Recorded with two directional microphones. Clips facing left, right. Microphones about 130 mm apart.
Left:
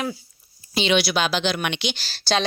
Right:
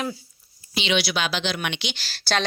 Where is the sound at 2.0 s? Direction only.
25° left (ahead or behind).